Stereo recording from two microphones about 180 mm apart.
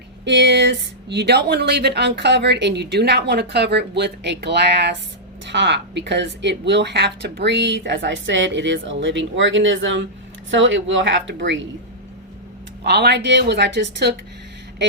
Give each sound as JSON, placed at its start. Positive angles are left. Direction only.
{"t": 0.3, "sound": "a woman's voice", "side_deg": -75}
{"t": 12.8, "sound": "speech", "side_deg": -70}